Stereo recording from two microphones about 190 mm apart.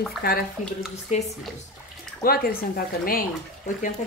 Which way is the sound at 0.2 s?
50° left (ahead or behind).